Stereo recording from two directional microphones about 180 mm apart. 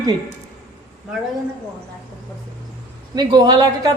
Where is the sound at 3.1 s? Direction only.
25° right (ahead or behind).